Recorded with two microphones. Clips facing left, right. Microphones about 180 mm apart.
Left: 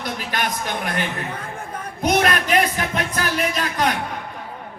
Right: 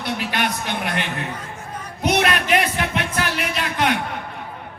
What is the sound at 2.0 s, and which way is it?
Music, 40° left (ahead or behind).